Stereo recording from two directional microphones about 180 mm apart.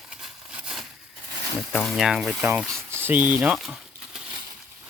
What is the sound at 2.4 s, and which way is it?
Speech, 15° right (ahead or behind).